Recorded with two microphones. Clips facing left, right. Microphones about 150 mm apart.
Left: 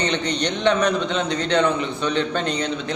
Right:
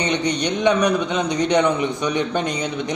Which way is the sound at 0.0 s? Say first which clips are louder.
Right 2 dB; 10° right (ahead or behind).